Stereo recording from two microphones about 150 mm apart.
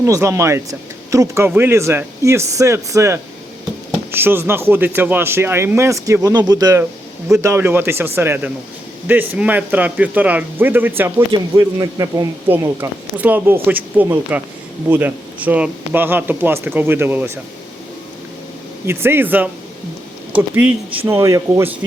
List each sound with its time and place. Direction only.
0.0 s speech: 20° right (ahead or behind)
18.9 s speech: 15° right (ahead or behind)
21.1 s speech: 20° right (ahead or behind)